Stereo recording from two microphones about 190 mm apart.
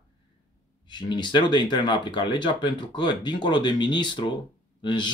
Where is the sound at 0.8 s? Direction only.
25° left (ahead or behind).